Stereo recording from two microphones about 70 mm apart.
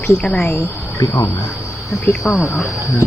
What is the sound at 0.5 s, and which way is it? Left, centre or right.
Speech, left.